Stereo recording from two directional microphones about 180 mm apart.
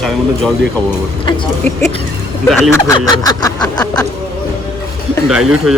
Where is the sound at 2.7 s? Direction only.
15° left (ahead or behind).